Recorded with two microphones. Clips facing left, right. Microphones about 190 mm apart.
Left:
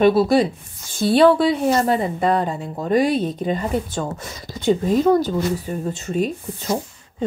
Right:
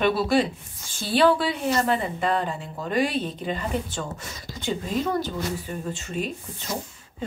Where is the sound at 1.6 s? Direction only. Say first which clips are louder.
Left 5 dB; 45° left (ahead or behind).